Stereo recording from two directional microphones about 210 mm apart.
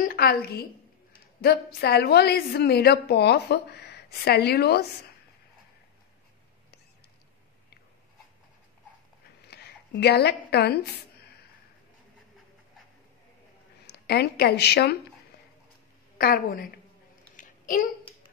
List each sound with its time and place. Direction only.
0.0 s a woman's voice: 45° left (ahead or behind)
9.5 s a woman's voice: 50° left (ahead or behind)
13.8 s speech: 50° left (ahead or behind)
16.2 s a woman's voice: 45° left (ahead or behind)
17.4 s a sound: 40° left (ahead or behind)